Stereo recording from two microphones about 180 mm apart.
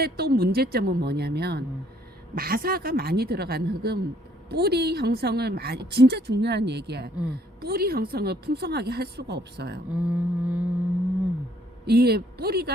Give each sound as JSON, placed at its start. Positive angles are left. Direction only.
{"t": 0.0, "sound": "a woman's voice", "side_deg": -60}
{"t": 9.9, "sound": "vehicle", "side_deg": -5}
{"t": 11.9, "sound": "a woman's voice", "side_deg": -60}